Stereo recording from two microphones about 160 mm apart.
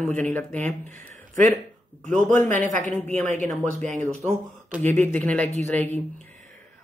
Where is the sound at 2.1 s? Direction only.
10° left (ahead or behind).